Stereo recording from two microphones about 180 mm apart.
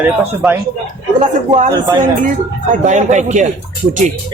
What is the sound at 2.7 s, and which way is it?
Speech, 45° right (ahead or behind).